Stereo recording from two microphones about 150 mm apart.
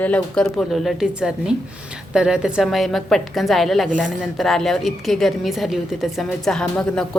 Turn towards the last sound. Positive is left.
turn(degrees=5)  # may be behind; listen again after turning